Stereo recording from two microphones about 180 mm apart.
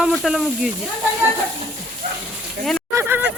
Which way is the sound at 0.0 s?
Centre (ahead or behind).